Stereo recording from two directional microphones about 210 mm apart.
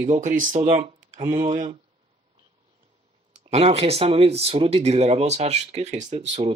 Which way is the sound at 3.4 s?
30° right (ahead or behind).